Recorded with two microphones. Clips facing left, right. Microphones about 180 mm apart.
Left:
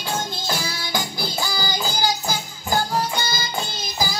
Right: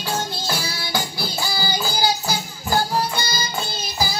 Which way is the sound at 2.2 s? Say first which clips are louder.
Right 1 dB; 15° left (ahead or behind).